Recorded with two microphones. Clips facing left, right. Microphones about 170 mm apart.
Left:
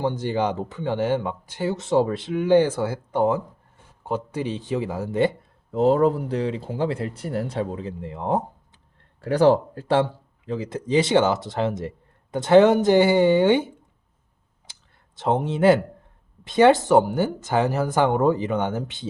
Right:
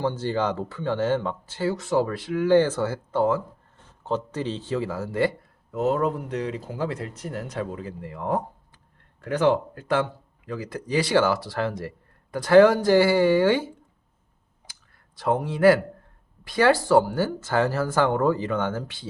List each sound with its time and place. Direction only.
0.0 s speech: 15° left (ahead or behind)
9.2 s speech: 35° left (ahead or behind); by 13.7 s 20° left (ahead or behind)
14.7 s clicking: 25° left (ahead or behind)
16.4 s speech: 20° left (ahead or behind)